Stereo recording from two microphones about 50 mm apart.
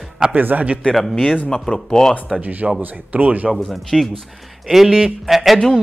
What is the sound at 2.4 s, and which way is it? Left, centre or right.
Speech, right.